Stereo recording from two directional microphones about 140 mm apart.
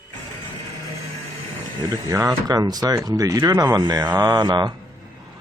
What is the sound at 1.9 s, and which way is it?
Speech, 25° right (ahead or behind).